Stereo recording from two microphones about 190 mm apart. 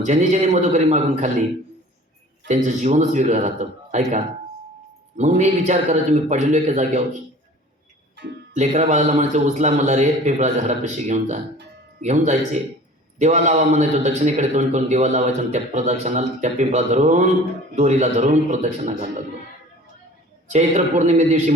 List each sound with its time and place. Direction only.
0.0 s a man's voice: 40° right (ahead or behind)
2.5 s a man's voice: 40° right (ahead or behind)
8.1 s music: 65° right (ahead or behind)
8.5 s a man's voice: 35° right (ahead or behind)
20.5 s a man's voice: 40° right (ahead or behind)